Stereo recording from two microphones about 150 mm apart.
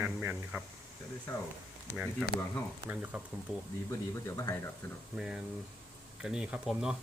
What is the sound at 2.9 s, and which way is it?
Speech, 10° right (ahead or behind).